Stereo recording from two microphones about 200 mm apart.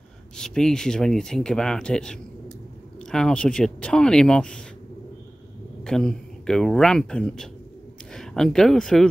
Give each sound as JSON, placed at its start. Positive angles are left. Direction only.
{"t": 0.4, "sound": "speech", "side_deg": 5}
{"t": 5.9, "sound": "speech", "side_deg": 5}